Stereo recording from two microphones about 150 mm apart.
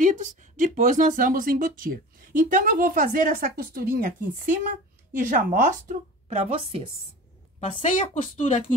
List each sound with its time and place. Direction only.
0.0 s speech: 55° right (ahead or behind); by 4.6 s 70° right (ahead or behind)
5.1 s speech: 60° right (ahead or behind); by 6.8 s 40° right (ahead or behind)
7.6 s speech: 45° left (ahead or behind)